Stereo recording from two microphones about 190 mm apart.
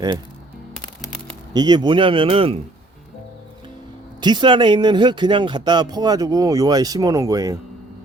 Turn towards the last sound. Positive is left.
turn(degrees=-20)  # may be behind; listen again after turning